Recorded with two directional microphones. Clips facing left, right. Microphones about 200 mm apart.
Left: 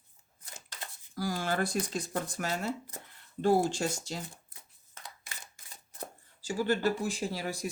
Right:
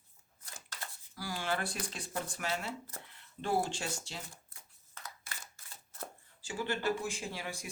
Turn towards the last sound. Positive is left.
turn(degrees=40)  # may be behind; listen again after turning